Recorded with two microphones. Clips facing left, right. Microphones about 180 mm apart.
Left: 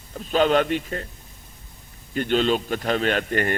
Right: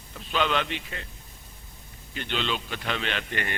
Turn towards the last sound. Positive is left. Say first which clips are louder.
# left 9 dB
turn(degrees=45)  # may be behind; listen again after turning